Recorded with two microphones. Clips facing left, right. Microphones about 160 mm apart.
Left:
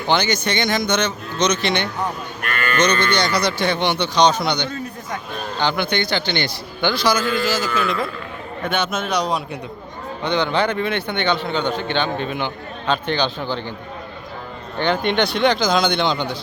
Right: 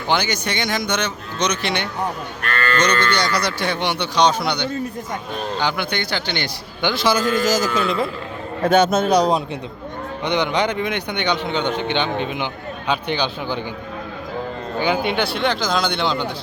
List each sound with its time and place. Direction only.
0.1 s a man's voice: 10° right (ahead or behind)
2.4 s livestock: 15° left (ahead or behind)
3.4 s a man's voice: 10° right (ahead or behind)
6.9 s a man's voice: 20° right (ahead or behind)
7.2 s a man's voice: 45° right (ahead or behind)
7.9 s a man's voice: 25° right (ahead or behind)
8.6 s a man's voice: 40° right (ahead or behind)
10.2 s a man's voice: 15° right (ahead or behind)
14.8 s speech: 5° right (ahead or behind)